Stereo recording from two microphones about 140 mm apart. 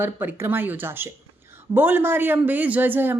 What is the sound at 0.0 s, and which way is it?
A man's voice, 15° right (ahead or behind).